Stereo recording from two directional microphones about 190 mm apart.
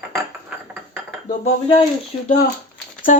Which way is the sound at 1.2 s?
35° left (ahead or behind).